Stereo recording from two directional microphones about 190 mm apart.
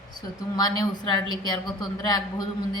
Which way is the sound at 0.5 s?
20° left (ahead or behind).